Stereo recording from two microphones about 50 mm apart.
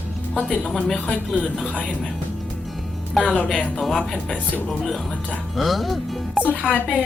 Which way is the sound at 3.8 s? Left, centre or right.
Centre.